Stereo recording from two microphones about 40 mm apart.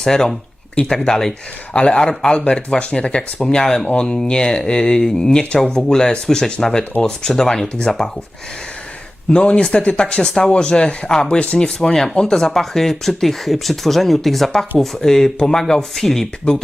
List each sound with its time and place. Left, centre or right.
0.0 s speech: centre
1.7 s speech: left
3.8 s speech: left
9.3 s speech: left